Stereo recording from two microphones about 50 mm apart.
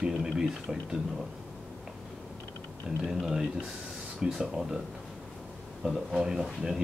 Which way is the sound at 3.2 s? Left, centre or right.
Centre.